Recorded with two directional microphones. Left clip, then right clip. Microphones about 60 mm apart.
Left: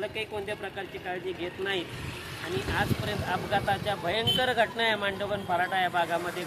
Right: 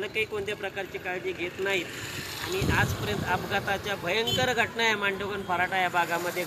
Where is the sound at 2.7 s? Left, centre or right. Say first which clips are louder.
Right 1 dB; centre.